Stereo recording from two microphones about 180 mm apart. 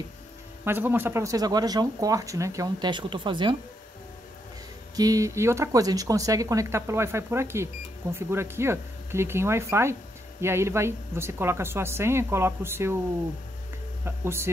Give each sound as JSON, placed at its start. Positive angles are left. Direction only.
{"t": 0.7, "sound": "speech", "side_deg": -10}
{"t": 4.9, "sound": "speech", "side_deg": -20}
{"t": 14.0, "sound": "speech", "side_deg": -15}